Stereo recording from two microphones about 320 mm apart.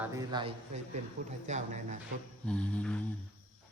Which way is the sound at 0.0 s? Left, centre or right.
Centre.